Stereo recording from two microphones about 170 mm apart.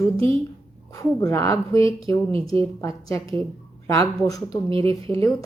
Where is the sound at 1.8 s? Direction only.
30° right (ahead or behind).